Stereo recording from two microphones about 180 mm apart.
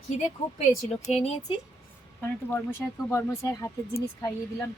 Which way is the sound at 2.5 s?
15° left (ahead or behind).